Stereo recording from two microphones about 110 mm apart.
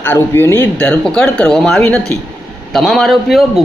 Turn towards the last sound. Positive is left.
turn(degrees=0)  # may be behind; listen again after turning